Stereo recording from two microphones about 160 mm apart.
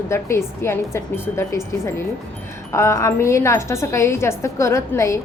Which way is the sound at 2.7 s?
20° left (ahead or behind).